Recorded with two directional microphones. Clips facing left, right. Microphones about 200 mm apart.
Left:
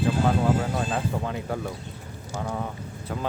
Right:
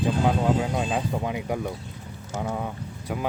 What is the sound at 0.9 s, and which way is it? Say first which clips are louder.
Speech: right 1 dB; 15° right (ahead or behind).